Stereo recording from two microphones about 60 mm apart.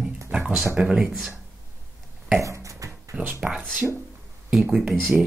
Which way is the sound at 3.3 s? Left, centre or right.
Centre.